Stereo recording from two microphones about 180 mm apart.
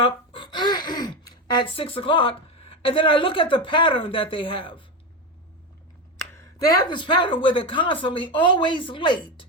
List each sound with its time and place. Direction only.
0.0 s speech: 25° left (ahead or behind)
6.3 s speech: 20° left (ahead or behind)